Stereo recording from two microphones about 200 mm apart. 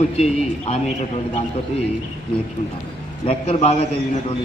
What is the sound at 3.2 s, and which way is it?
Speech, 30° left (ahead or behind).